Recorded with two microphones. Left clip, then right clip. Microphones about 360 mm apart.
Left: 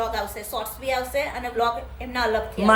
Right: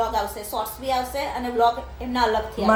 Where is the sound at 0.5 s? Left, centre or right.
Centre.